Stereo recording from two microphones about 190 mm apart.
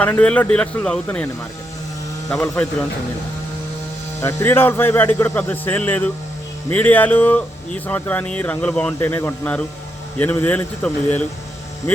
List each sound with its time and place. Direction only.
0.0 s speech: 5° left (ahead or behind)
2.3 s speech: 5° left (ahead or behind)
4.2 s speech: 15° left (ahead or behind)